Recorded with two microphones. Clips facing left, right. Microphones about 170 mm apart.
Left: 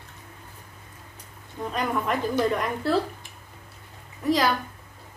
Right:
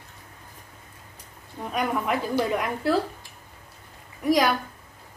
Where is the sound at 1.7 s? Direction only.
10° right (ahead or behind).